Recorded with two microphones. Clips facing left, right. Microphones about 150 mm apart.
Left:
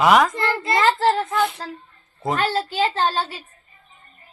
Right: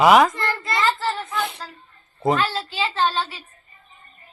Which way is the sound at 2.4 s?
50° left (ahead or behind).